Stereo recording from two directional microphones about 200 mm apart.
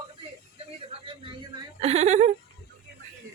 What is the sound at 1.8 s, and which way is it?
Speech, 30° right (ahead or behind).